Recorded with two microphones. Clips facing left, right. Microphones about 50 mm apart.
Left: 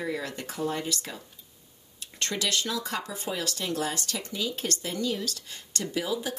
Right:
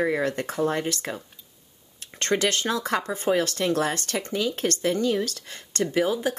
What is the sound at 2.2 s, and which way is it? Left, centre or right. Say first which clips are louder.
Speech: right 6 dB; right.